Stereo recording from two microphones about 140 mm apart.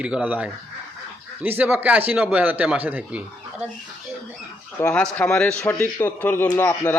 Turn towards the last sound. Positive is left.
turn(degrees=15)  # may be behind; listen again after turning